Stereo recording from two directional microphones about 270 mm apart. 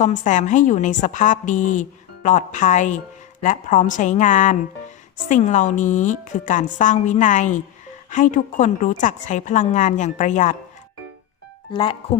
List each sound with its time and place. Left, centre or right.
0.0 s a woman's voice: left
11.7 s a woman's voice: centre